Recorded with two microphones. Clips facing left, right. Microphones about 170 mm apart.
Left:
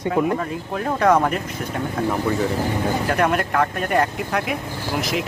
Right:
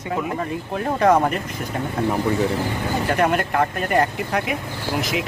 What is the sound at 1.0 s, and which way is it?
Speech, centre (ahead or behind).